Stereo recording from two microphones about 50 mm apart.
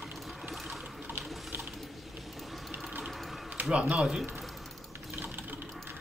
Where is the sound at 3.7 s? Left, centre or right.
Right.